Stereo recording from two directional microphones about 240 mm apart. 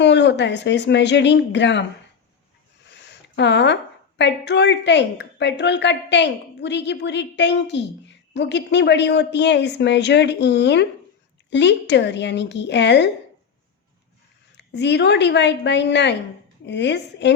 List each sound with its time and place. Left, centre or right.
0.0 s a woman's voice: left
3.3 s a woman's voice: left
14.5 s a woman's voice: left